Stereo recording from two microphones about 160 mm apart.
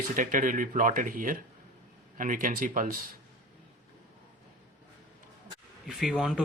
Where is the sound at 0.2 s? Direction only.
55° right (ahead or behind).